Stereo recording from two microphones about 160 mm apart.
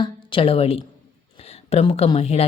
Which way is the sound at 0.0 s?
30° left (ahead or behind).